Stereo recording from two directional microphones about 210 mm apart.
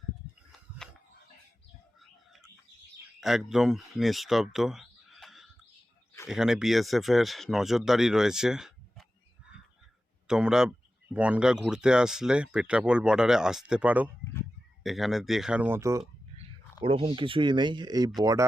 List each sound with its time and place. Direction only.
0.8 s a sound: centre (ahead or behind)
3.2 s speech: centre (ahead or behind)
10.2 s speech: 5° right (ahead or behind)
16.8 s speech: 25° right (ahead or behind)